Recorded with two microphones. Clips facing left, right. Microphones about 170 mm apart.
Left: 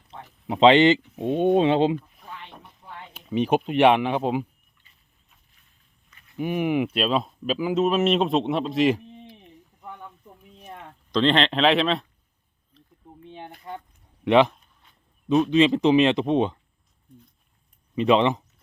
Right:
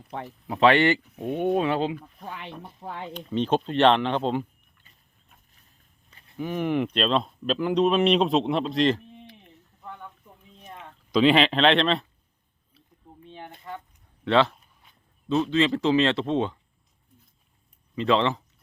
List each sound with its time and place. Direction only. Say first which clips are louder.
0.4 s speech: left 4 dB; 20° left (ahead or behind)
2.2 s a sound: right 4 dB; 80° right
2.8 s speech: right 7 dB; 90° right
3.1 s speech: left 2 dB; 5° left (ahead or behind)
6.1 s walk: right 2 dB; 30° right (ahead or behind)
6.3 s speech: left 2 dB; 15° left (ahead or behind)
10.6 s a sound: left 2 dB; 10° left (ahead or behind)
11.1 s speech: right 2 dB; 10° right (ahead or behind)
12.7 s a sound: left 4 dB; 10° right (ahead or behind)
13.2 s a sound: left 2 dB; 20° left (ahead or behind)
14.3 s speech: left 3 dB; 15° left (ahead or behind)
17.9 s speech: left 3 dB; 15° left (ahead or behind)